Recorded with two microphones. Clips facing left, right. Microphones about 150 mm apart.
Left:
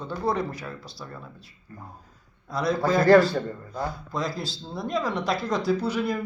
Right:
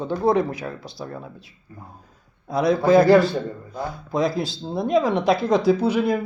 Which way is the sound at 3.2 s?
20° right (ahead or behind).